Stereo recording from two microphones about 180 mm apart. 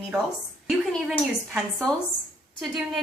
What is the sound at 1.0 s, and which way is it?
A woman's voice, centre (ahead or behind).